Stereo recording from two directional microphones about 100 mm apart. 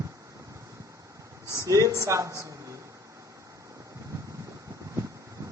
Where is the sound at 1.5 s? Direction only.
35° right (ahead or behind).